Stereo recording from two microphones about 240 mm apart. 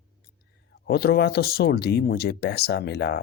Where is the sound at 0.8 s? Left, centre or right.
Left.